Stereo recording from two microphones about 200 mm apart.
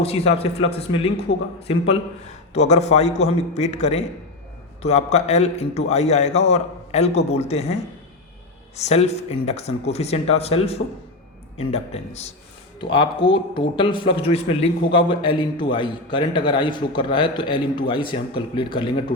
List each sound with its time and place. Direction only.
0.0 s speech: 30° left (ahead or behind)
2.5 s a man's voice: 35° left (ahead or behind)
8.7 s a man's voice: 35° left (ahead or behind)